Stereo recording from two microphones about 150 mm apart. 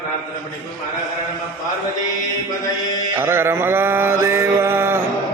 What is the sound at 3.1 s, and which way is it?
Mantra, 15° right (ahead or behind).